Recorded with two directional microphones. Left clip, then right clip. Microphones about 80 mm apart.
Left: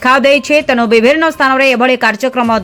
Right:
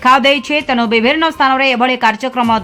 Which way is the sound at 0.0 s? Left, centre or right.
Left.